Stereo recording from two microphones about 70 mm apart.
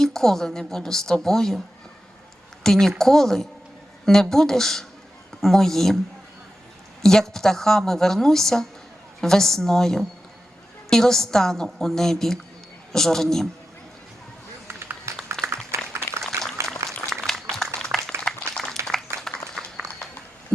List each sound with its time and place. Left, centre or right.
0.0 s a woman's voice: centre
2.6 s a woman's voice: centre
7.0 s a woman's voice: centre
15.1 s a sound: right
16.6 s applause: right
17.1 s applause: centre
17.7 s a sound: centre